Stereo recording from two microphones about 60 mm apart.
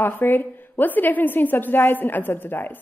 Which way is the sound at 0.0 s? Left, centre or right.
Left.